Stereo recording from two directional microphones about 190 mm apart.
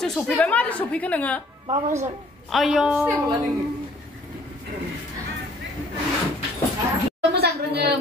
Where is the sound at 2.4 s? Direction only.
Centre (ahead or behind).